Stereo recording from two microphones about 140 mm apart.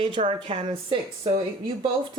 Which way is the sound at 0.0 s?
40° right (ahead or behind).